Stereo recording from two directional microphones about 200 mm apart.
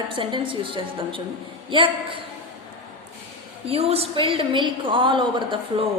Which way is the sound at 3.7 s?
30° right (ahead or behind).